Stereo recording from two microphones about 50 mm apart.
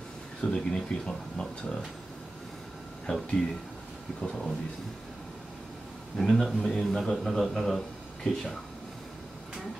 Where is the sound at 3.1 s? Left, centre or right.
Centre.